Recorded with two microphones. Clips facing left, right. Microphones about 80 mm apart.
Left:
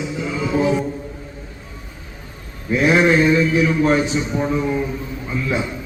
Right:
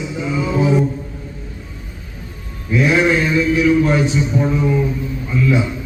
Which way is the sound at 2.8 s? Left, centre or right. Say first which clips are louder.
Even; left.